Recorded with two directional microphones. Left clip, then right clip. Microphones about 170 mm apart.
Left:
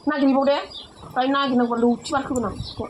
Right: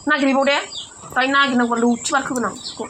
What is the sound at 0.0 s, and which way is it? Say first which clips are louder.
Speech: right 3 dB; 25° right (ahead or behind).